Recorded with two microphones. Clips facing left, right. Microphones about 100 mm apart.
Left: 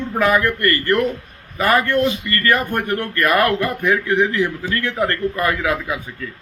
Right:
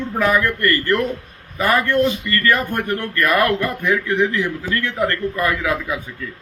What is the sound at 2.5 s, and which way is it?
A man's voice, 20° left (ahead or behind).